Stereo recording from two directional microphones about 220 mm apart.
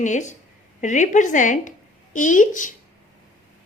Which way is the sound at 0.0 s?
35° left (ahead or behind).